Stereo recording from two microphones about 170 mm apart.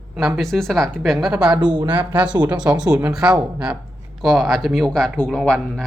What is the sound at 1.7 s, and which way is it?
Speech, 30° right (ahead or behind).